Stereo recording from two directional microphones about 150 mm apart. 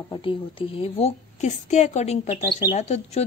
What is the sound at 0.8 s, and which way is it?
A woman's voice, 45° left (ahead or behind).